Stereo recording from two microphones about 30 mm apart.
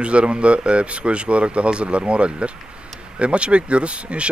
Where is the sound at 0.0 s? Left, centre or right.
Right.